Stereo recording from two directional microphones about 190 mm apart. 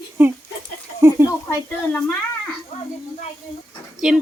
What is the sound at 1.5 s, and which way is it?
Speech, 5° left (ahead or behind).